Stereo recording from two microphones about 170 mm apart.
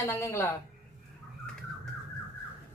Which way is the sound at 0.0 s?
15° left (ahead or behind).